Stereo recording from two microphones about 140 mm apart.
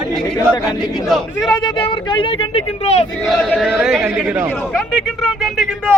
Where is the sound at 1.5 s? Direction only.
35° left (ahead or behind).